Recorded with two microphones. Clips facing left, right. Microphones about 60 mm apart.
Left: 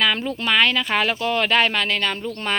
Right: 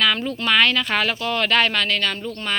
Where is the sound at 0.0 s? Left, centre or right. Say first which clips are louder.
Even; centre.